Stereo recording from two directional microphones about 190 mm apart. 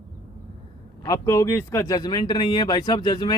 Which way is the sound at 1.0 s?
20° left (ahead or behind).